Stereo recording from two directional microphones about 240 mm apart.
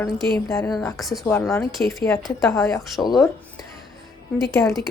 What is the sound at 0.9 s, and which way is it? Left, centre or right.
A woman's voice, centre.